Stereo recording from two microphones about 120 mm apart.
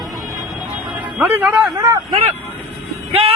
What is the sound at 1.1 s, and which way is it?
Speech, 15° right (ahead or behind).